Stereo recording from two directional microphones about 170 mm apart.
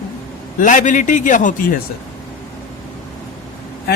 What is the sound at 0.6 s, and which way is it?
Speech, 50° left (ahead or behind).